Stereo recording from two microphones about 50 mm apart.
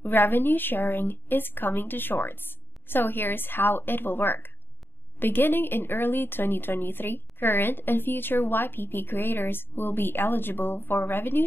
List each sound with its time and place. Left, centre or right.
0.0 s speech: left